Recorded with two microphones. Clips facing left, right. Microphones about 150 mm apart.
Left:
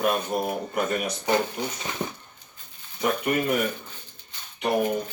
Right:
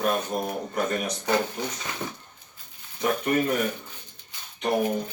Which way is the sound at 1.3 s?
20° left (ahead or behind).